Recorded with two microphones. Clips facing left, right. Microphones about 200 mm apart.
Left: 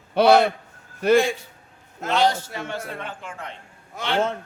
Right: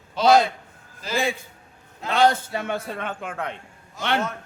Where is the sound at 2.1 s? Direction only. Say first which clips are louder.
Right 2 dB; 55° right (ahead or behind).